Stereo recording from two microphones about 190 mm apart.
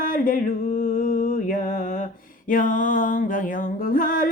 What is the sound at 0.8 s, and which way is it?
Mantra, 45° left (ahead or behind).